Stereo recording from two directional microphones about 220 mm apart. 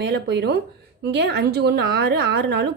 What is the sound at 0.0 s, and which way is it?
A woman's voice, 50° right (ahead or behind).